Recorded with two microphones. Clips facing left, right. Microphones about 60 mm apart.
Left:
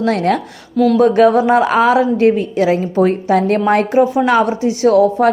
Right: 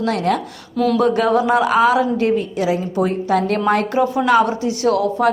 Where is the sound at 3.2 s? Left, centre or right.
Left.